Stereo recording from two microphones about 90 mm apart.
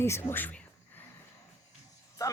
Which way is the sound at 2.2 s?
40° left (ahead or behind).